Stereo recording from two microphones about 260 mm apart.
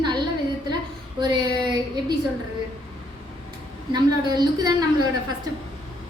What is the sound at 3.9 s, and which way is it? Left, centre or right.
A woman's voice, centre.